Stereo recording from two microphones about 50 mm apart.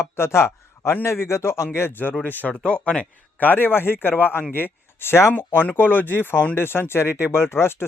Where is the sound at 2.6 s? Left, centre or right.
Left.